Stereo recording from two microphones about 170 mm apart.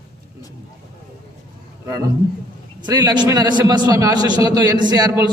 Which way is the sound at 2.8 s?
25° right (ahead or behind).